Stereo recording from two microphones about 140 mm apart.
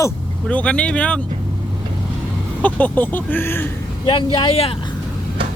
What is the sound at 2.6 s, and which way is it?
Speech, 10° left (ahead or behind).